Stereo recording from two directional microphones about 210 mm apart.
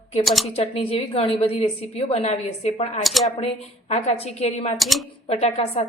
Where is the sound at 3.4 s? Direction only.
30° left (ahead or behind).